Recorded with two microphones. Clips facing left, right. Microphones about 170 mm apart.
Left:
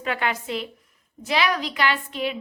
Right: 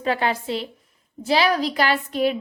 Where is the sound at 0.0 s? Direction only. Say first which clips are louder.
Right 4 dB; 35° right (ahead or behind).